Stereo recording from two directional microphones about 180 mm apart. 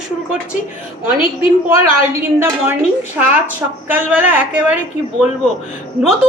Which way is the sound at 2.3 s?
15° right (ahead or behind).